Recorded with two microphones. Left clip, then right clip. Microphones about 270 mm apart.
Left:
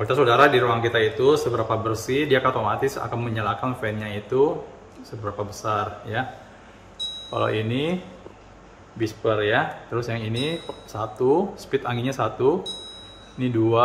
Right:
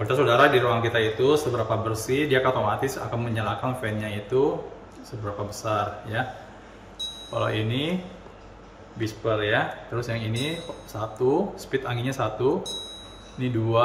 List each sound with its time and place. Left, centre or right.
0.0 s a man's voice: centre
7.3 s a man's voice: centre
9.0 s a man's voice: left